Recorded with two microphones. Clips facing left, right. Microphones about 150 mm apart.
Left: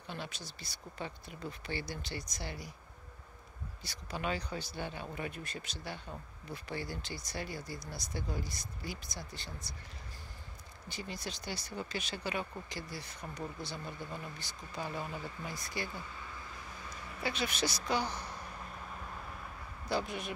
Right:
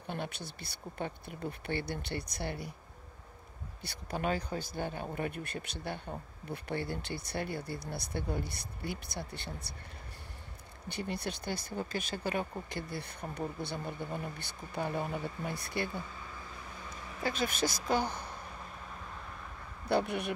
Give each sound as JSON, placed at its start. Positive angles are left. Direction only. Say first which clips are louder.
{"t": 0.0, "sound": "speech", "louder": "right 5 dB", "side_deg": -55}
{"t": 3.8, "sound": "speech", "louder": "right 4 dB", "side_deg": -55}
{"t": 10.9, "sound": "speech", "louder": "right 5 dB", "side_deg": -60}
{"t": 17.2, "sound": "speech", "louder": "right 3 dB", "side_deg": -45}
{"t": 19.9, "sound": "speech", "louder": "right 5 dB", "side_deg": -60}